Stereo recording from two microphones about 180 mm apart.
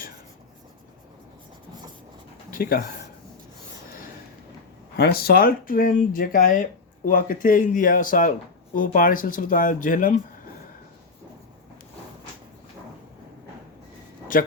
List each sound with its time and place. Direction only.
2.5 s speech: 55° left (ahead or behind)
4.9 s speech: 60° left (ahead or behind)